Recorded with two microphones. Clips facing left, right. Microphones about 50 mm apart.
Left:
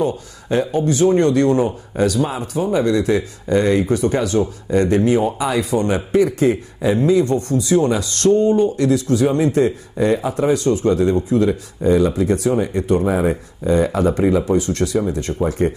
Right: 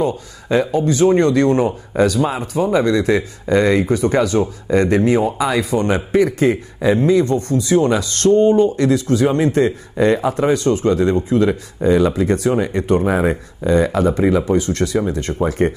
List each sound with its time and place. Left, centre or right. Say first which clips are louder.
0.0 s speech: right 1 dB; right
0.7 s speech: right 1 dB; right
7.2 s speech: right 1 dB; right
9.9 s speech: right 3 dB; right
10.4 s speech: left 1 dB; right
14.4 s speech: right 1 dB; right